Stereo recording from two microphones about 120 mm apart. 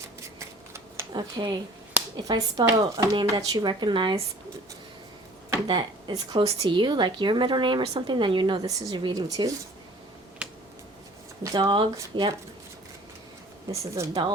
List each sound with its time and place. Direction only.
0.2 s shuffling cards: 25° right (ahead or behind)
1.1 s a woman's voice: 35° right (ahead or behind)
5.6 s a woman's voice: 40° right (ahead or behind)
10.4 s a sound: 10° right (ahead or behind)
11.6 s a woman's voice: 45° right (ahead or behind)
13.7 s a woman's voice: 25° right (ahead or behind)